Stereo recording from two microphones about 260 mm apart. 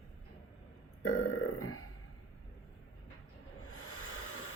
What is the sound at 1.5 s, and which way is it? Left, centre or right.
Burping, left.